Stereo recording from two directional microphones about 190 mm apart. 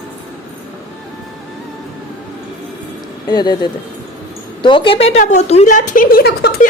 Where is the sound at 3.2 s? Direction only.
20° left (ahead or behind).